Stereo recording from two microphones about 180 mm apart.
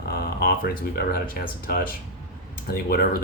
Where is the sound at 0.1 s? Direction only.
55° left (ahead or behind).